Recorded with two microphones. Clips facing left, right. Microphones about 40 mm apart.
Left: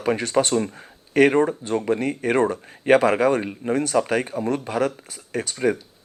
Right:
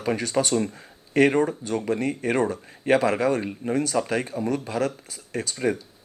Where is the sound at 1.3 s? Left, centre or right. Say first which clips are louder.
Left 3 dB; centre.